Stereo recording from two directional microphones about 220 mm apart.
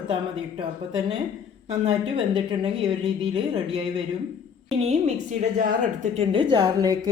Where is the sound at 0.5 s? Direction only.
25° right (ahead or behind).